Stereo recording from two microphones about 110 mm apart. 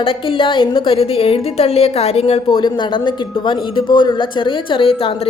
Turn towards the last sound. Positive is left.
turn(degrees=55)  # may be behind; listen again after turning